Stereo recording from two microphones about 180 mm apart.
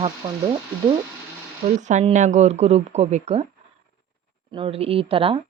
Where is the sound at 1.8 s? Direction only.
40° right (ahead or behind).